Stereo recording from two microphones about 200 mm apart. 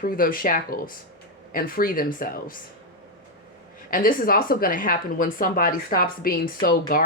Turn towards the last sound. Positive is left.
turn(degrees=45)  # may be behind; listen again after turning